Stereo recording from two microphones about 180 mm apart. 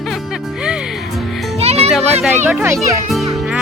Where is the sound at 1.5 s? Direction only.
35° right (ahead or behind).